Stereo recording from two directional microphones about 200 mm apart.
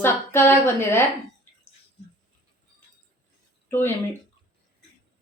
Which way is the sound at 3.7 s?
10° left (ahead or behind).